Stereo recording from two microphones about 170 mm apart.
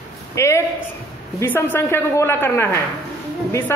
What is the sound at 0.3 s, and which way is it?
A woman's voice, 15° left (ahead or behind).